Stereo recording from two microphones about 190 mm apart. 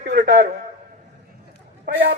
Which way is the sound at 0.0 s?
60° right (ahead or behind).